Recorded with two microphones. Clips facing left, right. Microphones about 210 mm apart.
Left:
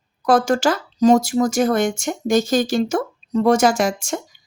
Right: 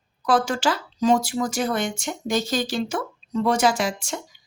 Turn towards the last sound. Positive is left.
turn(degrees=45)  # may be behind; listen again after turning